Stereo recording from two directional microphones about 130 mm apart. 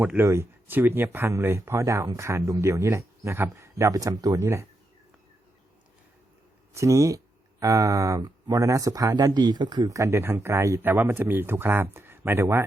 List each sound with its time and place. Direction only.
0.0 s speech: 15° right (ahead or behind)
6.7 s speech: 25° right (ahead or behind)